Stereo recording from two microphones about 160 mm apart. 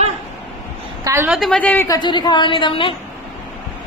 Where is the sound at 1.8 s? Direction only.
25° left (ahead or behind).